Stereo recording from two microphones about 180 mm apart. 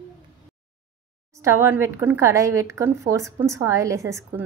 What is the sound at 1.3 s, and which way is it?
A woman's voice, 15° right (ahead or behind).